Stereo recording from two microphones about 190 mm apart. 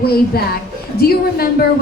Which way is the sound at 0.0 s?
55° left (ahead or behind).